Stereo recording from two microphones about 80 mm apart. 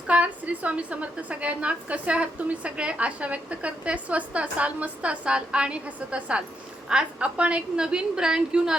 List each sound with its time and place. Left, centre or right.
0.1 s a woman's voice: centre